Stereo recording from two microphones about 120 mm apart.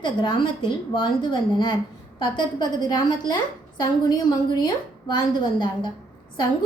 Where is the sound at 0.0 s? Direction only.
40° left (ahead or behind).